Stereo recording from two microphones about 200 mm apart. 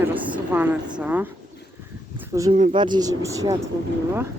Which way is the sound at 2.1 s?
15° right (ahead or behind).